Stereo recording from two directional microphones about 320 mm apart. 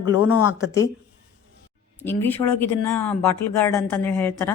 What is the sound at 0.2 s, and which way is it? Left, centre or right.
Speech, left.